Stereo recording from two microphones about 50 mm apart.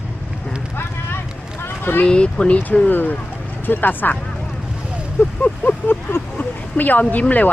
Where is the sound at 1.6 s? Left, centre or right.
Left.